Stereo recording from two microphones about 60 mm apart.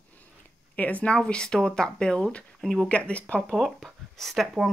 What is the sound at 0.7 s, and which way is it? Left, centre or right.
A woman's voice, left.